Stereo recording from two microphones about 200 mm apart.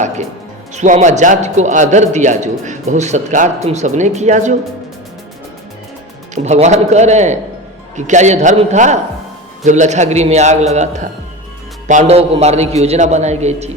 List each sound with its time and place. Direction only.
0.7 s a man's voice: 35° right (ahead or behind)
6.3 s a man's voice: 35° right (ahead or behind)